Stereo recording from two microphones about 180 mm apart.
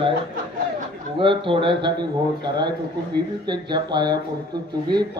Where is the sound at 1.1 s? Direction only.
30° right (ahead or behind).